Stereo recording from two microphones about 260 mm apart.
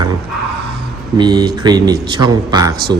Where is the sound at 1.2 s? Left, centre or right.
Centre.